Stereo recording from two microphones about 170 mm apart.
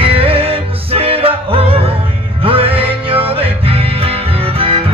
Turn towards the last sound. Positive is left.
turn(degrees=-35)  # may be behind; listen again after turning